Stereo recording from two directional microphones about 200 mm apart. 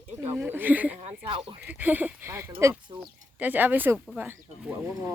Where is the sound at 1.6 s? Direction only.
10° right (ahead or behind).